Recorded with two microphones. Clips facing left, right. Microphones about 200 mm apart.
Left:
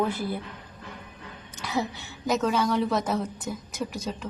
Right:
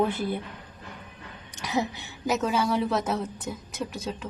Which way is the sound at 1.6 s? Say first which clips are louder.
Right 1 dB; 15° right (ahead or behind).